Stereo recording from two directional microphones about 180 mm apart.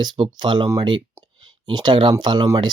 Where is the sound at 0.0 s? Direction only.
25° right (ahead or behind).